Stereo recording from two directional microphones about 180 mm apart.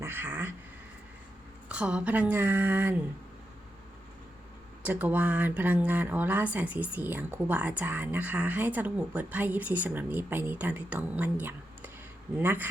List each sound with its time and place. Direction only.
0.0 s speech: 10° right (ahead or behind)
1.7 s speech: 5° right (ahead or behind)
4.8 s speech: 10° right (ahead or behind)